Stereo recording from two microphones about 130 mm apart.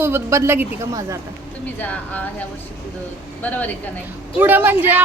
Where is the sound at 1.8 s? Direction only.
10° left (ahead or behind).